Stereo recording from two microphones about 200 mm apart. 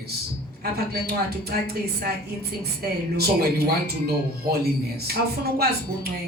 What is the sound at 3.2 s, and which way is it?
Speech, 50° right (ahead or behind).